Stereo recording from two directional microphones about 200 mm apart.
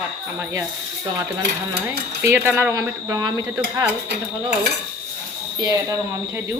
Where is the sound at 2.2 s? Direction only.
10° right (ahead or behind).